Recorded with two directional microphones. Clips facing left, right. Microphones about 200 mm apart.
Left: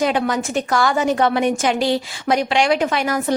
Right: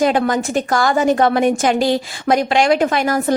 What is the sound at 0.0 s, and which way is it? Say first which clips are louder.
A woman's voice: right 3 dB; 45° right (ahead or behind).